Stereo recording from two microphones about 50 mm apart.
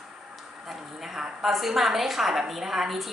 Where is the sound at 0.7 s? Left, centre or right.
Centre.